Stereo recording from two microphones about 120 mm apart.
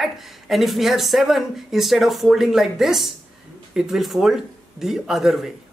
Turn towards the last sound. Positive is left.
turn(degrees=0)  # may be behind; listen again after turning